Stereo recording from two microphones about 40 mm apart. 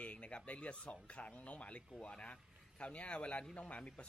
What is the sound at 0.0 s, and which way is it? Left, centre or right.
Speech, left.